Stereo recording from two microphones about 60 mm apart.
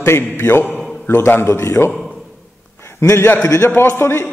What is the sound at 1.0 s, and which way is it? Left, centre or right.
Speech, left.